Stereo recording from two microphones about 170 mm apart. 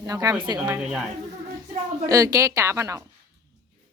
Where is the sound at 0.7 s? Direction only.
5° right (ahead or behind).